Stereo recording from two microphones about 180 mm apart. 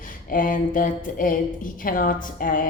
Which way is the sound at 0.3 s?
50° left (ahead or behind).